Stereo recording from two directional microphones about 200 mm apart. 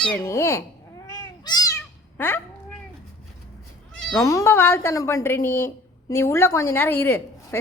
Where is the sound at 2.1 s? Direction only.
10° left (ahead or behind).